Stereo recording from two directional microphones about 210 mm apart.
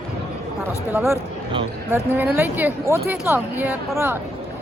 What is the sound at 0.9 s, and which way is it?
Speech, 10° right (ahead or behind).